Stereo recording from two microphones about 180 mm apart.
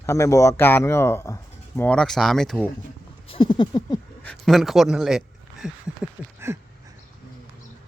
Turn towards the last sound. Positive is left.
turn(degrees=-15)  # may be behind; listen again after turning